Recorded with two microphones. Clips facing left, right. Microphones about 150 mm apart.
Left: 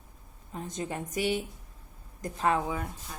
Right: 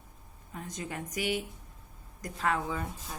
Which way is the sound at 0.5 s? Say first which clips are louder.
Left 4 dB; 25° left (ahead or behind).